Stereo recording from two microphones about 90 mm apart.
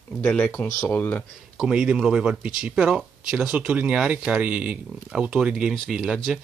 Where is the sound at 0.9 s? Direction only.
20° left (ahead or behind).